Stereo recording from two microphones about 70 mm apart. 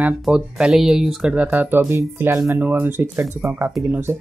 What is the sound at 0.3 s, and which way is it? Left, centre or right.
Speech, centre.